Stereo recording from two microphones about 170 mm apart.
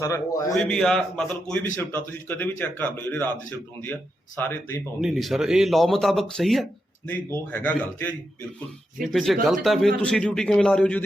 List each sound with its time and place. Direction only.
0.0 s speech: 20° left (ahead or behind)
0.5 s a man's voice: 5° left (ahead or behind)
4.4 s a man's voice: 10° left (ahead or behind)
4.9 s speech: centre (ahead or behind)
7.1 s a man's voice: 10° left (ahead or behind)
9.0 s speech: centre (ahead or behind)